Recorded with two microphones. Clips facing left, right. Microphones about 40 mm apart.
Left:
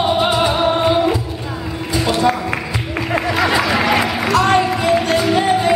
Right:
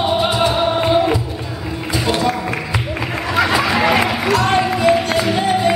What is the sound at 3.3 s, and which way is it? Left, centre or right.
Chatter, centre.